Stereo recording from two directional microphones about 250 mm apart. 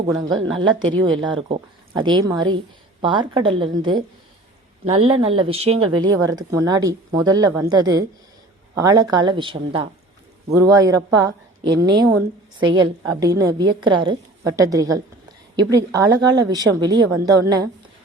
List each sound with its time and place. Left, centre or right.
0.5 s a woman's voice: centre